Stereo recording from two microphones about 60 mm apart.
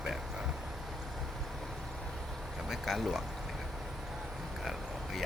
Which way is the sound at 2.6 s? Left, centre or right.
Centre.